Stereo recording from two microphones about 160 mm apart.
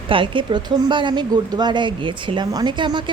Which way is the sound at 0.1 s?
30° right (ahead or behind).